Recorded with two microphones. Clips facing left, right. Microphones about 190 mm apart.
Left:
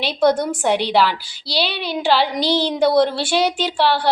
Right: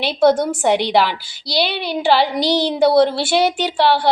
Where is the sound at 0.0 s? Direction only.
10° right (ahead or behind).